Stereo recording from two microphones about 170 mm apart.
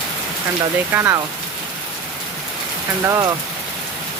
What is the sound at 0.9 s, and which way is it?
Speech, 15° right (ahead or behind).